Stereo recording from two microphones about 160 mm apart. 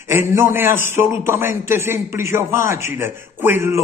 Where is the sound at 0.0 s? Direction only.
15° right (ahead or behind).